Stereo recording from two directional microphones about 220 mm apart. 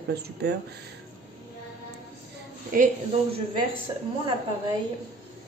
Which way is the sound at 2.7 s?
40° right (ahead or behind).